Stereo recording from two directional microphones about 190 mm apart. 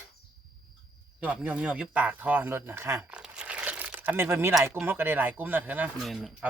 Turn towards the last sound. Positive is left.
turn(degrees=0)  # may be behind; listen again after turning